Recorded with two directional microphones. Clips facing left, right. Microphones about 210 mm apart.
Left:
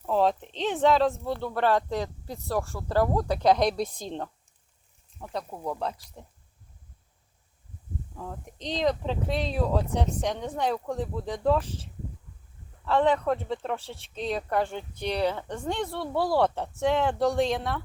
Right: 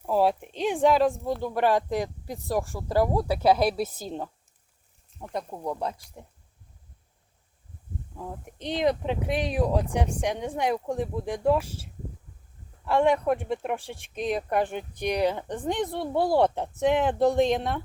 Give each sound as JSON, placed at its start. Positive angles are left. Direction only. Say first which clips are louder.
{"t": 0.0, "sound": "speech", "louder": "right 1 dB", "side_deg": -10}
{"t": 5.5, "sound": "speech", "louder": "even", "side_deg": -5}
{"t": 8.1, "sound": "speech", "louder": "right 3 dB", "side_deg": -10}